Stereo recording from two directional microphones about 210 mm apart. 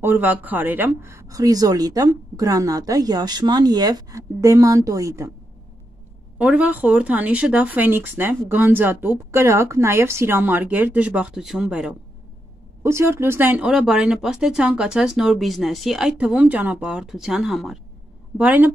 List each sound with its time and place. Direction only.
0.0 s speech: 10° right (ahead or behind)
6.3 s speech: 5° right (ahead or behind)